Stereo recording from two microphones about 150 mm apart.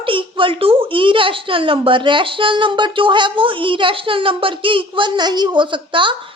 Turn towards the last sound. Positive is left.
turn(degrees=-35)  # may be behind; listen again after turning